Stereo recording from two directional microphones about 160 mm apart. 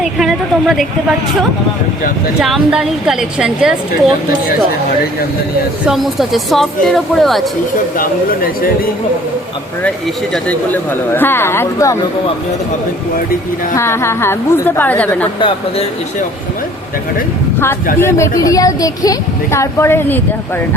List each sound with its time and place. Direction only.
0.0 s speech: centre (ahead or behind)
2.4 s speech: 5° right (ahead or behind)
5.8 s speech: centre (ahead or behind)
7.9 s speech: 60° left (ahead or behind)
10.3 s speech: 10° left (ahead or behind)
13.7 s speech: 15° left (ahead or behind)
15.4 s speech: 30° left (ahead or behind)
18.0 s speech: 20° left (ahead or behind)